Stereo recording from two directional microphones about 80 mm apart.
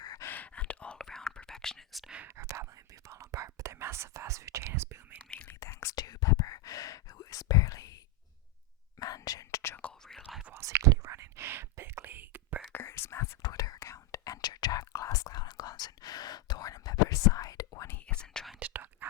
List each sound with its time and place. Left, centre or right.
0.2 s whispering: left; by 2.1 s centre
2.2 s whispering: right
5.3 s whispering: centre
5.5 s whispering: left
6.0 s whispering: left
10.0 s whispering: centre
10.2 s whispering: centre
10.5 s whispering: right
12.7 s whispering: left
13.4 s whispering: left
14.4 s whispering: left
18.0 s whispering: centre
18.6 s whispering: right